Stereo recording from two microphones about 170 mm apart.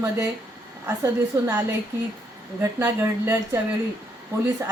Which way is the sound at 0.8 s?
15° right (ahead or behind).